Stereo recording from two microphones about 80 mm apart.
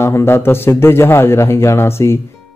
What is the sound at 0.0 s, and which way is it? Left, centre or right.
Speech, left.